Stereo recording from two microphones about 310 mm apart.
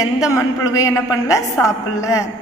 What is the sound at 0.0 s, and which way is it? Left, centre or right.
A woman's voice, centre.